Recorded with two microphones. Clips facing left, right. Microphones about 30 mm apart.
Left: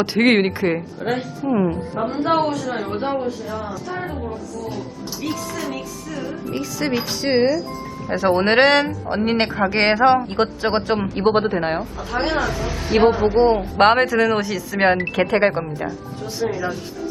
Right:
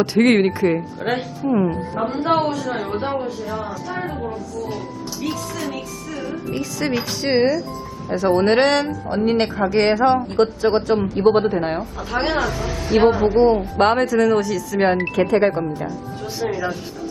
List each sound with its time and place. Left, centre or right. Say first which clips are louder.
0.0 s speech: right 1 dB; centre
1.1 s a woman's voice: even; centre
1.5 s speech: right 1 dB; centre
1.7 s speech: even; centre
5.2 s speech: even; centre
8.1 s speech: even; left
12.1 s speech: right 1 dB; centre
13.3 s speech: right 1 dB; left
15.5 s speech: right 1 dB; centre
16.4 s speech: even; centre